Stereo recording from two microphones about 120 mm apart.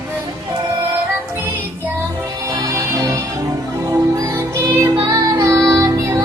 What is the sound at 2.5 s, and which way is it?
Music, 25° right (ahead or behind).